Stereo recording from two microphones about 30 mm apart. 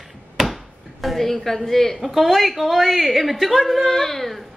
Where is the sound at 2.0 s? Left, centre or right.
Centre.